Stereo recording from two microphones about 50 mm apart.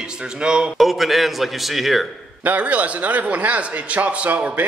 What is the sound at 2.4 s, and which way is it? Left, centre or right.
A man's voice, right.